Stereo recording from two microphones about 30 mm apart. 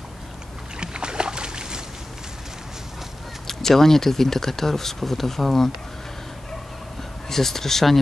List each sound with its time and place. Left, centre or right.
0.7 s boat: right
3.4 s speech: centre
7.2 s speech: centre